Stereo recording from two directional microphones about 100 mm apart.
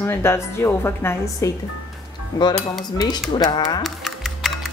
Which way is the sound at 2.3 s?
45° left (ahead or behind).